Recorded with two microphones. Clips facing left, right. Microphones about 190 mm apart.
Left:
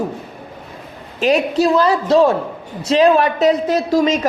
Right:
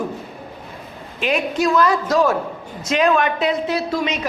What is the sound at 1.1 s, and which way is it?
A woman's voice, 40° left (ahead or behind).